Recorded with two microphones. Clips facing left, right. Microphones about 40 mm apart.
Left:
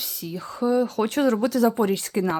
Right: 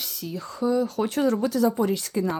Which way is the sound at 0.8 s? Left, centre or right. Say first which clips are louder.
Left 2 dB; left.